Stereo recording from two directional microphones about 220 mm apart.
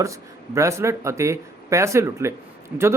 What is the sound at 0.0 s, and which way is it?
Speech, 15° right (ahead or behind).